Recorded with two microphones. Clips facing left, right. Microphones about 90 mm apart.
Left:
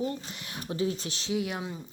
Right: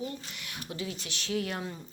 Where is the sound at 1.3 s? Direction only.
10° left (ahead or behind).